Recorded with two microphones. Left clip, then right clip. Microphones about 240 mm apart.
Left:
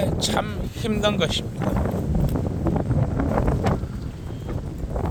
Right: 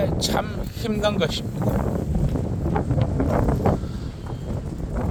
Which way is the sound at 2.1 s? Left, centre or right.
Centre.